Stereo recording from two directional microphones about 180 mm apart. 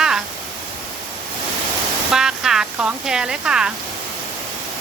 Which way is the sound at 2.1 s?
5° right (ahead or behind).